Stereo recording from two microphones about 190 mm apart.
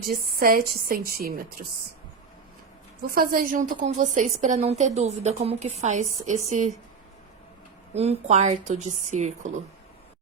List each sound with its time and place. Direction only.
0.0 s a woman's voice: 50° right (ahead or behind)
3.1 s a woman's voice: 50° right (ahead or behind)
7.9 s a woman's voice: 35° right (ahead or behind)